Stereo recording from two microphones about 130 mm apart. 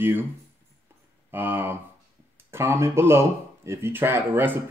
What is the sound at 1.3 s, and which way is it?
Speech, 15° right (ahead or behind).